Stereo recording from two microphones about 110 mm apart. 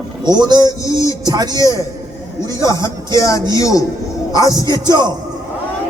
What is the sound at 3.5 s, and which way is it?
Speech, 30° left (ahead or behind).